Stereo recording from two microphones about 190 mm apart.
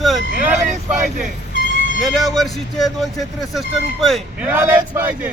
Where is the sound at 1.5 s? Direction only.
70° right (ahead or behind).